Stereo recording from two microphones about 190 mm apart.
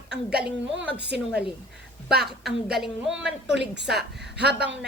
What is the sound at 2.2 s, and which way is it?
Speech, centre (ahead or behind).